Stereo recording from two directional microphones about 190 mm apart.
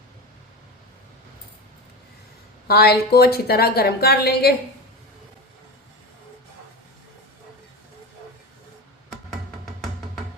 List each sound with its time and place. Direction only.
2.6 s a woman's voice: 55° left (ahead or behind)